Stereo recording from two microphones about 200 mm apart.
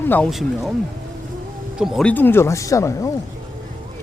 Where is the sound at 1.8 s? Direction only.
5° left (ahead or behind).